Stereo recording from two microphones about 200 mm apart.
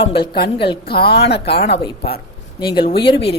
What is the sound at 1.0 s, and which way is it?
Speech, 55° left (ahead or behind).